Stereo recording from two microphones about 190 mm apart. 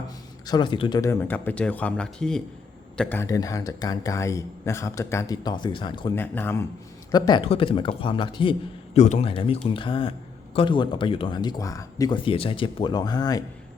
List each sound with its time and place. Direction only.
0.4 s a man's voice: 25° left (ahead or behind)
6.1 s a man's voice: 10° left (ahead or behind)
7.1 s speech: 20° left (ahead or behind)
9.0 s a man's voice: 35° left (ahead or behind); by 13.4 s 20° left (ahead or behind)